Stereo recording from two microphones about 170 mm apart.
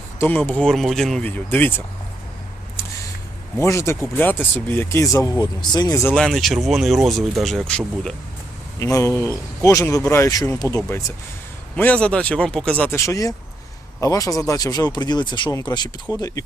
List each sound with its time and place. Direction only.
0.2 s speech: 10° left (ahead or behind)
3.6 s speech: 15° left (ahead or behind)
6.1 s speech: 5° left (ahead or behind)
8.8 s speech: 20° left (ahead or behind)
11.8 s speech: 10° left (ahead or behind)